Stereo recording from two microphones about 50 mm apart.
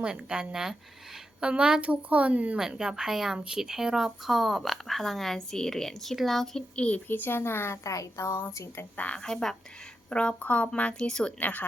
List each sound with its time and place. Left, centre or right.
0.0 s speech: centre
2.6 s speech: centre
6.7 s a woman's voice: left
7.1 s speech: left
7.9 s a woman's voice: left
9.1 s speech: centre
10.1 s a woman's voice: left
10.9 s a woman's voice: centre
11.3 s speech: left